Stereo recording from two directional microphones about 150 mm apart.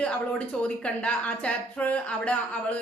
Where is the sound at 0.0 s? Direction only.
5° left (ahead or behind).